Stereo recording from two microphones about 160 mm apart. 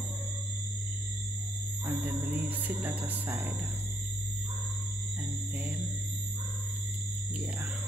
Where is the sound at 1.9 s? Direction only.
10° right (ahead or behind).